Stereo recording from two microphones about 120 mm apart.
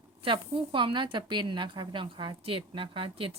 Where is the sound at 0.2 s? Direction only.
45° right (ahead or behind).